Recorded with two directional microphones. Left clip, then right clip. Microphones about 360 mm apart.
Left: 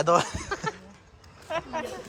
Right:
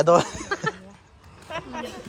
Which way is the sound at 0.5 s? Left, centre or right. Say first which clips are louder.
Right 5 dB; right.